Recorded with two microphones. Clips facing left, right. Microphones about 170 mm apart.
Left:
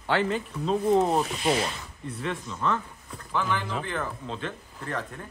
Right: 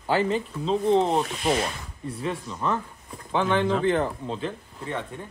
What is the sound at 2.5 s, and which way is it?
Speech, 15° right (ahead or behind).